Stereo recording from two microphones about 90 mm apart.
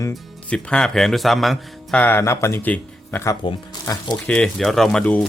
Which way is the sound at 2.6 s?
20° left (ahead or behind).